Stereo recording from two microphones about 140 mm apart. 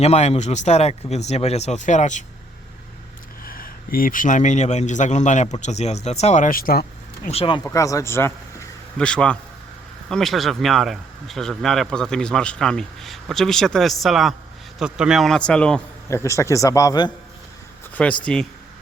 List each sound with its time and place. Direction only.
0.0 s speech: 50° left (ahead or behind)
3.4 s a man's voice: 90° left
7.3 s speech: 40° left (ahead or behind)
7.6 s a man's voice: 20° left (ahead or behind)
9.0 s speech: 5° left (ahead or behind)
16.0 s a man's voice: 20° left (ahead or behind)
18.0 s speech: 5° left (ahead or behind)